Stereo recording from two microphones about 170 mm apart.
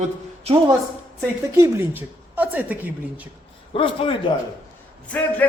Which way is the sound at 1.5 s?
15° right (ahead or behind).